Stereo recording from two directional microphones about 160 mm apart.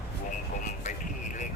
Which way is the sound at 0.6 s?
55° left (ahead or behind).